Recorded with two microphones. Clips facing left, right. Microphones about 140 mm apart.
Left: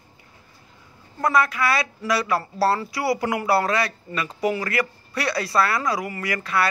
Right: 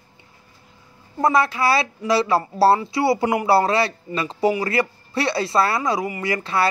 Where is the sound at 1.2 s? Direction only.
25° right (ahead or behind).